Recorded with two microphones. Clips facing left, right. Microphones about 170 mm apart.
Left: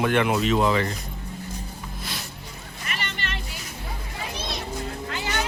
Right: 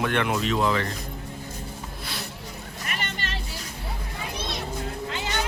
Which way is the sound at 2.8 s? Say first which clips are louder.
Left 1 dB; 45° right (ahead or behind).